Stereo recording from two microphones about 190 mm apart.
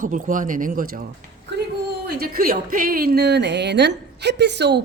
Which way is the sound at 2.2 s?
50° right (ahead or behind).